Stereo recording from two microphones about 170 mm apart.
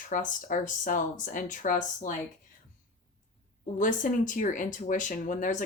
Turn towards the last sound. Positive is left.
turn(degrees=50)  # may be behind; listen again after turning